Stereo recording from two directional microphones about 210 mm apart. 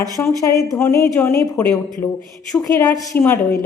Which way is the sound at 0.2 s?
15° left (ahead or behind).